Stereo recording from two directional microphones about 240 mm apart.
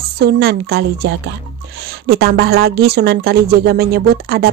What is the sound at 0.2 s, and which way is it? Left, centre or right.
Speech, right.